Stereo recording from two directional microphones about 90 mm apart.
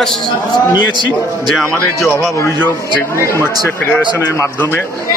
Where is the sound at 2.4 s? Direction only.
30° left (ahead or behind).